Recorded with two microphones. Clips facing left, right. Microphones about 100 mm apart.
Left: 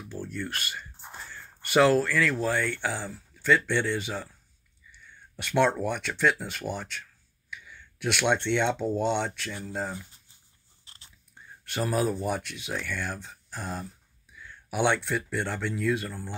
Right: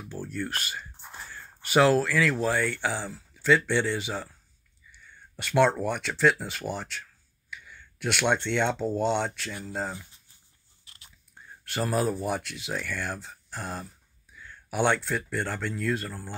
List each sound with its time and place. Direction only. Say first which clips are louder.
0.1 s speech: right 2 dB; 10° right (ahead or behind)
5.0 s a sound: even; centre (ahead or behind)
5.8 s speech: right 1 dB; 5° right (ahead or behind)
10.9 s biting: left 1 dB; 30° left (ahead or behind)
11.6 s speech: even; centre (ahead or behind)